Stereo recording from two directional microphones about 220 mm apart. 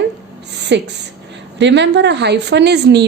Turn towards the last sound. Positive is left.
turn(degrees=-50)  # may be behind; listen again after turning